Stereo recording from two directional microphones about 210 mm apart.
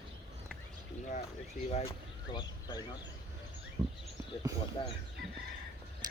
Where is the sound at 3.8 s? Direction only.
20° right (ahead or behind).